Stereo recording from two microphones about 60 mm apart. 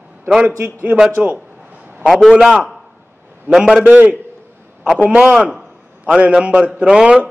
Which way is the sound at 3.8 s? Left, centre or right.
Right.